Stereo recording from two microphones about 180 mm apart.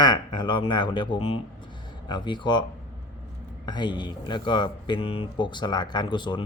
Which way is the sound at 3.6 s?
25° left (ahead or behind).